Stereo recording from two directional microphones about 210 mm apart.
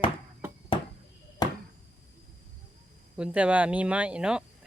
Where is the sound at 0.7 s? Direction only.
25° left (ahead or behind).